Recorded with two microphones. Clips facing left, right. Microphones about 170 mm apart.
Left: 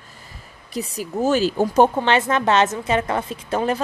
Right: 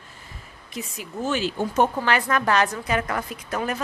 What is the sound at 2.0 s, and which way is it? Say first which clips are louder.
A woman's voice: left 4 dB; 25° left (ahead or behind).